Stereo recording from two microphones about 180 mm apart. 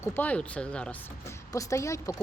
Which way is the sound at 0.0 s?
10° left (ahead or behind).